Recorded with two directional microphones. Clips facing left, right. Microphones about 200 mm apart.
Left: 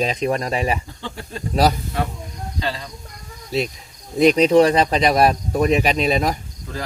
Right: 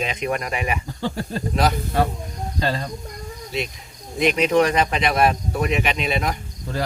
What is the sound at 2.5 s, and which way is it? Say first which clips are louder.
Speech: right 3 dB; 45° right (ahead or behind).